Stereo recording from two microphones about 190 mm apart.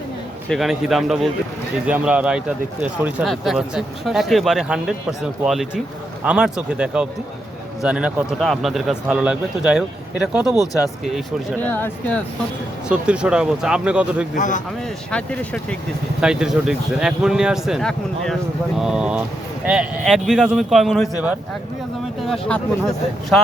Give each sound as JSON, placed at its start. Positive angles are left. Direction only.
{"t": 0.4, "sound": "speech", "side_deg": 0}
{"t": 11.6, "sound": "speech", "side_deg": 10}
{"t": 12.9, "sound": "speech", "side_deg": -5}
{"t": 14.3, "sound": "a man's voice", "side_deg": 40}
{"t": 15.1, "sound": "speech", "side_deg": 5}